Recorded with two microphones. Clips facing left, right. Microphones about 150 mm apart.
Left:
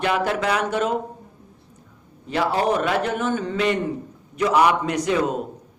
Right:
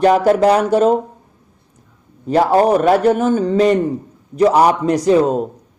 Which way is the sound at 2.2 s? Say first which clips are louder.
Right 9 dB; 40° right (ahead or behind).